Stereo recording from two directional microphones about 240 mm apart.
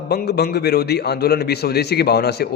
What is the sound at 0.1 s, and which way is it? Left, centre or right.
A man's voice, left.